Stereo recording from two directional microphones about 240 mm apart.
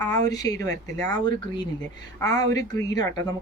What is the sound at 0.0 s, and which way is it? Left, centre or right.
A woman's voice, centre.